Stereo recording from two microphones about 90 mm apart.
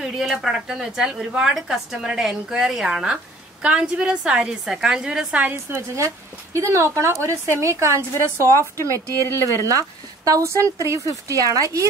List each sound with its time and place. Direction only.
0.0 s a woman's voice: 5° right (ahead or behind); by 11.8 s 40° right (ahead or behind)